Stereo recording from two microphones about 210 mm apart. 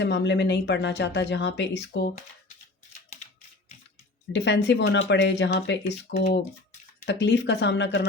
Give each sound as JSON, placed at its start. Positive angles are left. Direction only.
{"t": 0.0, "sound": "speech", "side_deg": 55}
{"t": 4.3, "sound": "speech", "side_deg": 55}